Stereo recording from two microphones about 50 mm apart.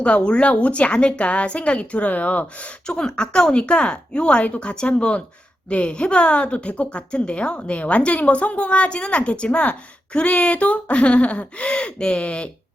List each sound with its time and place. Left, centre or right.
0.0 s a woman's voice: left
2.8 s a woman's voice: centre